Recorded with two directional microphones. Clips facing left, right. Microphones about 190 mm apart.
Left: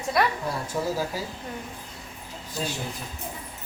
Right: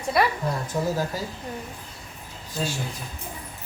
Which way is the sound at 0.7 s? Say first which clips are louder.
Right 1 dB; 10° left (ahead or behind).